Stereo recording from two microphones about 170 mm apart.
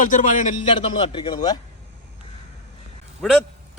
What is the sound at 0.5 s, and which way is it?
A man's voice, 30° left (ahead or behind).